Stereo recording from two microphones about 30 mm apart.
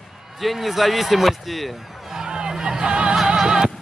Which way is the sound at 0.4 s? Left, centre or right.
Centre.